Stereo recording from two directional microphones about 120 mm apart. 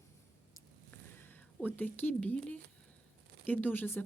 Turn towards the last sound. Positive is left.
turn(degrees=15)  # may be behind; listen again after turning